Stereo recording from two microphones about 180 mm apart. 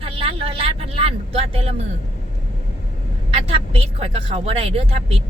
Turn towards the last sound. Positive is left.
turn(degrees=-35)  # may be behind; listen again after turning